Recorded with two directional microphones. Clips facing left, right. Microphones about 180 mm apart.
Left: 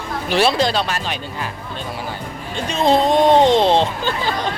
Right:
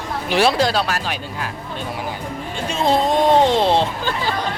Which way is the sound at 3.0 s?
20° left (ahead or behind).